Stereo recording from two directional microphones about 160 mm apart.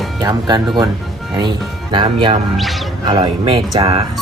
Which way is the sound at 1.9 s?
30° right (ahead or behind).